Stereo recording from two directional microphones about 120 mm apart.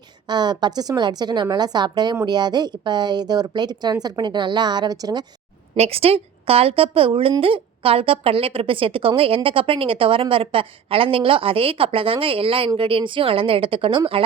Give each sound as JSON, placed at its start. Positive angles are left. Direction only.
{"t": 0.3, "sound": "speech", "side_deg": -35}
{"t": 5.7, "sound": "a woman's voice", "side_deg": -60}